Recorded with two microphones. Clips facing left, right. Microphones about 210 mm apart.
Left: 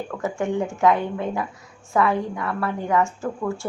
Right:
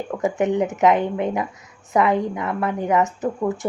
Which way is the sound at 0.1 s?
20° right (ahead or behind).